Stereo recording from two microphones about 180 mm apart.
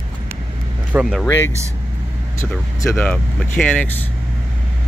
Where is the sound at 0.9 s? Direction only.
5° right (ahead or behind).